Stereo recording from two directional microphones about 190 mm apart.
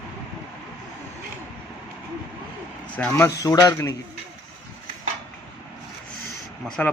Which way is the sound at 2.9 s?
10° left (ahead or behind).